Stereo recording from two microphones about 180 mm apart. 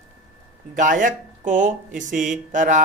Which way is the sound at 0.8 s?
45° right (ahead or behind).